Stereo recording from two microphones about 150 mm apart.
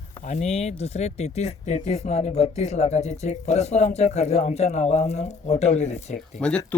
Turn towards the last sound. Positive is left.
turn(degrees=5)  # may be behind; listen again after turning